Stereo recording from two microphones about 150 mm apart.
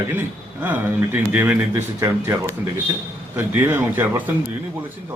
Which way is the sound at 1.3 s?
15° right (ahead or behind).